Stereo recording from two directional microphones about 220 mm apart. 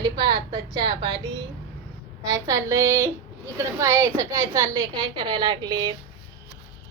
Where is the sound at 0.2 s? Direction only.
20° right (ahead or behind).